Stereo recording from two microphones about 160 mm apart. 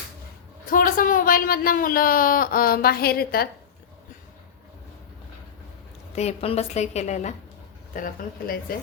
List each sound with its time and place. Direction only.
0.7 s speech: 60° left (ahead or behind)
6.1 s a woman's voice: 40° left (ahead or behind)
7.9 s speech: 60° left (ahead or behind)